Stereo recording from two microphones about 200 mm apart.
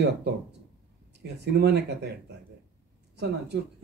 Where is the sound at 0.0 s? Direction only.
60° right (ahead or behind).